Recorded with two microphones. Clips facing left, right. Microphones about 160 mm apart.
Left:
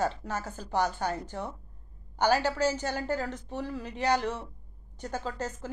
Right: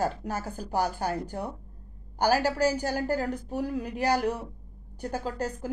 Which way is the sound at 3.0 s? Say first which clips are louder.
Right 3 dB; 40° right (ahead or behind).